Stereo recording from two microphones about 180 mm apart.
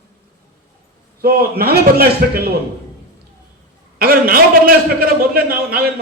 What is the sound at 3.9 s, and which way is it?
A man's voice, 55° right (ahead or behind).